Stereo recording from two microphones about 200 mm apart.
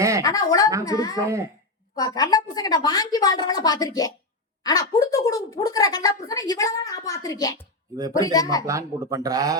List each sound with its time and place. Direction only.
0.2 s a woman's voice: 15° left (ahead or behind)
1.2 s speech: 15° right (ahead or behind)
2.0 s a woman's voice: 20° left (ahead or behind)
8.6 s speech: 15° right (ahead or behind)